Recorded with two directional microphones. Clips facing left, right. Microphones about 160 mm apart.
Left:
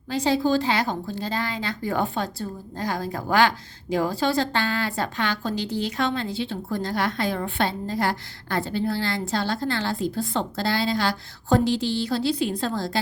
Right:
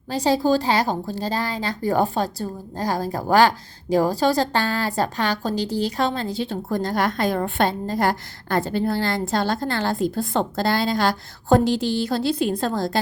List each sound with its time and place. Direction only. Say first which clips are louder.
0.1 s a woman's voice: right 2 dB; 35° right (ahead or behind)